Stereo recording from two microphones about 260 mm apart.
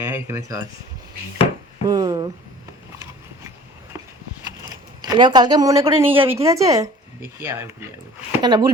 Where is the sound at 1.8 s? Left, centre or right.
Centre.